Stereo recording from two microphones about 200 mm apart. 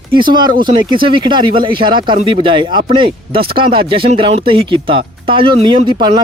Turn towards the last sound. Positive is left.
turn(degrees=-20)  # may be behind; listen again after turning